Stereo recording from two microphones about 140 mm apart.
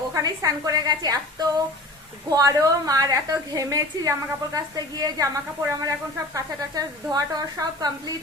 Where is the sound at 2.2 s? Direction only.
25° right (ahead or behind).